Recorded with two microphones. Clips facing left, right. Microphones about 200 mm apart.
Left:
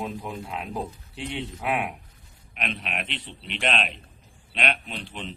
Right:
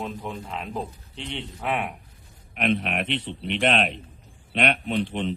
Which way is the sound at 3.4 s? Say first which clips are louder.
Right 5 dB; 55° right (ahead or behind).